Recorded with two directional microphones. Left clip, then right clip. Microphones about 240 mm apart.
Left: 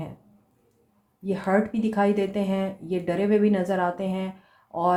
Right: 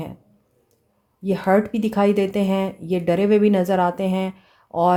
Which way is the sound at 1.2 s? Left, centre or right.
Right.